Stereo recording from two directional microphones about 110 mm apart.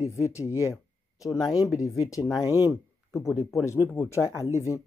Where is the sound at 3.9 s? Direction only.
25° left (ahead or behind).